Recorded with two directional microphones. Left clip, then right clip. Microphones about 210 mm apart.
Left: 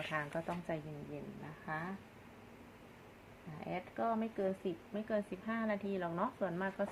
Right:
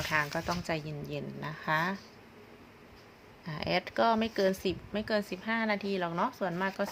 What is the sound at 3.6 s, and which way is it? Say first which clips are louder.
A woman's voice: right 11 dB; 55° right (ahead or behind).